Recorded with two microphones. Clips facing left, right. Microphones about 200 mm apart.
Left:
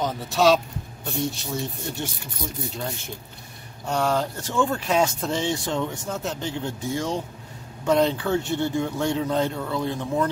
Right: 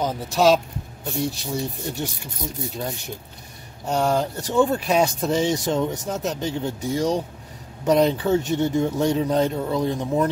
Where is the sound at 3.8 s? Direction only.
20° right (ahead or behind).